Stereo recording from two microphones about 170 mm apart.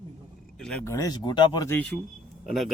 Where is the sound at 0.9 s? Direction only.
20° left (ahead or behind).